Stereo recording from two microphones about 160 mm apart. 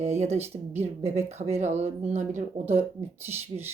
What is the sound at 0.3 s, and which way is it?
Speech, 15° right (ahead or behind).